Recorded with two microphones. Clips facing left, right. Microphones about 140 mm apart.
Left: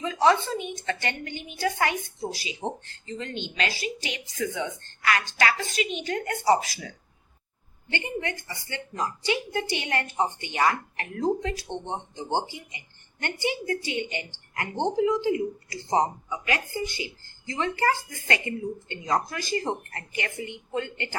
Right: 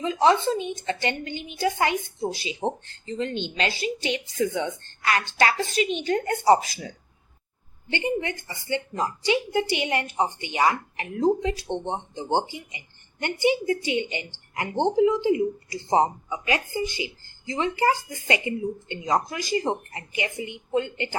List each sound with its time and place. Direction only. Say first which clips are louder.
0.0 s a woman's voice: right 2 dB; 25° right (ahead or behind)